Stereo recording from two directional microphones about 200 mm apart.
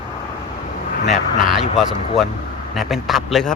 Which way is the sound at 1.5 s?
Centre (ahead or behind).